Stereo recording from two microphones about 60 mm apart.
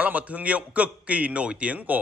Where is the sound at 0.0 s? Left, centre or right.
Right.